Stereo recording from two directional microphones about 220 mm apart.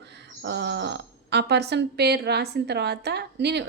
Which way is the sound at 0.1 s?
50° right (ahead or behind).